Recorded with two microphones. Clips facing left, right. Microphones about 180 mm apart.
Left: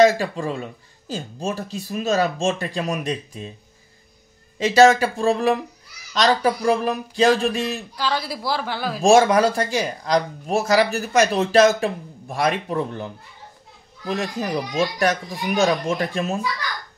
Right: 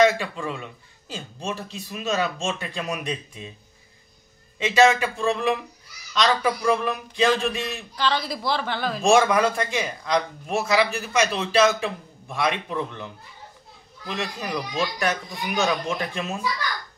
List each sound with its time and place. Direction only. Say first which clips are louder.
0.0 s speech: left 4 dB; 35° left (ahead or behind)
4.6 s speech: left 4 dB; 40° left (ahead or behind)
7.9 s a woman's voice: even; 10° left (ahead or behind)
9.1 s speech: left 4 dB; 35° left (ahead or behind)